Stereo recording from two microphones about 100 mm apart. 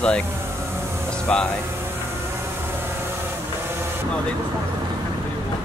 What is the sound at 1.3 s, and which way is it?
Speech, 10° left (ahead or behind).